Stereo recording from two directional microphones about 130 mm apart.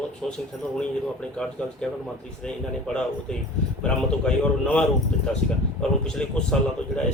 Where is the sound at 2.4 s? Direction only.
5° left (ahead or behind).